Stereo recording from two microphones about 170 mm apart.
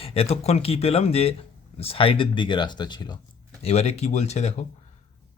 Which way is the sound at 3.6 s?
40° left (ahead or behind).